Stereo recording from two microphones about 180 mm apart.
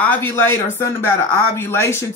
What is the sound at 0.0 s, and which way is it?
Speech, 10° left (ahead or behind).